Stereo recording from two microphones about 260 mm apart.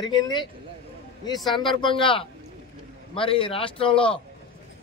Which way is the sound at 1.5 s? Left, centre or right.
Centre.